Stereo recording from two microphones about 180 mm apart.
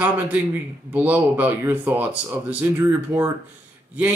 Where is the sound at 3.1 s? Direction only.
10° right (ahead or behind).